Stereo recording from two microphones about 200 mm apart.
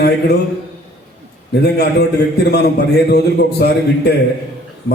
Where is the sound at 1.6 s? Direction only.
55° left (ahead or behind).